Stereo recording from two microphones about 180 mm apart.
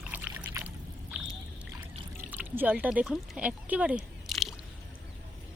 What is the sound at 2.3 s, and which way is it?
Speech, 10° right (ahead or behind).